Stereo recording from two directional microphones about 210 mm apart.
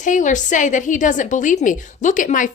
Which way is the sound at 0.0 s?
35° left (ahead or behind).